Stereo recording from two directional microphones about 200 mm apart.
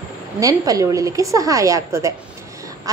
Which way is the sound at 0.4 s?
15° right (ahead or behind).